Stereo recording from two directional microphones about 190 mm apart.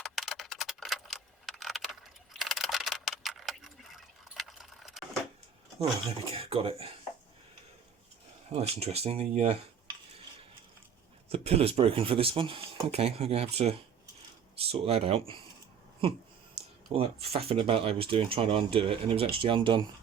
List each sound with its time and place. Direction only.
0.0 s a sound: centre (ahead or behind)
6.1 s speech: 30° right (ahead or behind)
8.5 s speech: 35° right (ahead or behind)
11.3 s speech: 30° right (ahead or behind)
17.0 s speech: 30° right (ahead or behind)